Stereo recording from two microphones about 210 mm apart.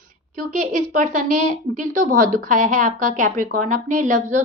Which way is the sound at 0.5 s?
40° right (ahead or behind).